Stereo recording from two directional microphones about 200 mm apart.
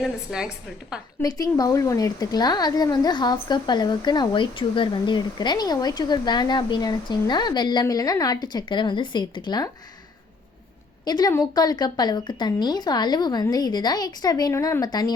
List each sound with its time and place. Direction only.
0.0 s a woman's voice: centre (ahead or behind)
1.2 s a woman's voice: 20° left (ahead or behind)
11.0 s a woman's voice: 20° left (ahead or behind)